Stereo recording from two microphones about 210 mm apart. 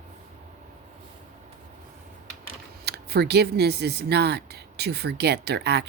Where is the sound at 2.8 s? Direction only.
50° right (ahead or behind).